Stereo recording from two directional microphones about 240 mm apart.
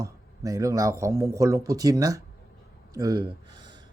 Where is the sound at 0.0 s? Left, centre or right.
Centre.